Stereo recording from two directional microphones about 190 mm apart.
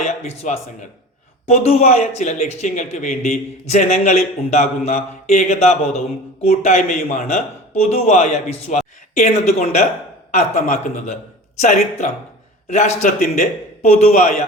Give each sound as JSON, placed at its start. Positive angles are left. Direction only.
{"t": 0.0, "sound": "speech", "side_deg": 35}